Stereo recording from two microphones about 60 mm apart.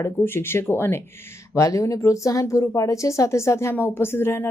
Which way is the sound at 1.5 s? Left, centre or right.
Left.